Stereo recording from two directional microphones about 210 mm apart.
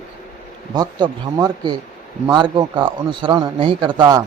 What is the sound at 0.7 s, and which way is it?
Speech, 20° right (ahead or behind).